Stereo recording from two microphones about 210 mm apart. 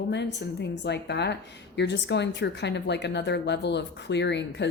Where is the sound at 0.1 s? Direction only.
55° left (ahead or behind).